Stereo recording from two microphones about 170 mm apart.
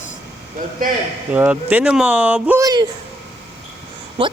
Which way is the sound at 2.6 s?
20° right (ahead or behind).